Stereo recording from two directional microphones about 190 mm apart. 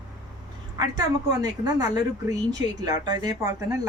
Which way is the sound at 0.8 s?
20° right (ahead or behind).